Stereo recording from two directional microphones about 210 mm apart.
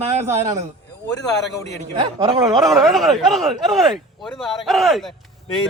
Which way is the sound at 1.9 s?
20° right (ahead or behind).